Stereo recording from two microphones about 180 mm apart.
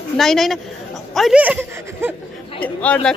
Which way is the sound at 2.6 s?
10° left (ahead or behind).